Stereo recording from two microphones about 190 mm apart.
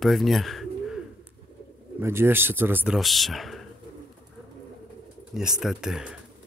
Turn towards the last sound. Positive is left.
turn(degrees=-5)  # may be behind; listen again after turning